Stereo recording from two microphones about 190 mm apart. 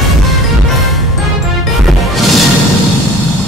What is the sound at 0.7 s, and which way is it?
Music, centre (ahead or behind).